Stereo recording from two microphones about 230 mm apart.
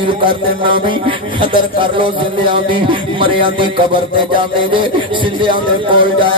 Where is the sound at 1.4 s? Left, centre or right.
Right.